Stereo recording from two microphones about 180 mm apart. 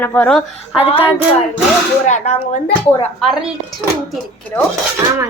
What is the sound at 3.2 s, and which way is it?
Speech, centre (ahead or behind).